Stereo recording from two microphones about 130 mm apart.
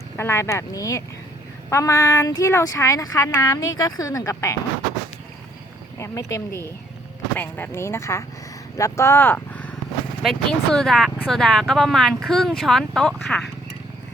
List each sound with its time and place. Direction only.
0.2 s speech: 20° left (ahead or behind)
6.0 s speech: 25° left (ahead or behind)
10.2 s speech: 5° left (ahead or behind)